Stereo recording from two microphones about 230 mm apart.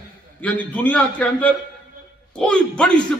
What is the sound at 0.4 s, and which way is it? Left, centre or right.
A man's voice, centre.